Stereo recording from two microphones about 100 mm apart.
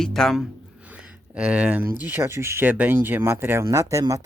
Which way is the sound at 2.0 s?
25° right (ahead or behind).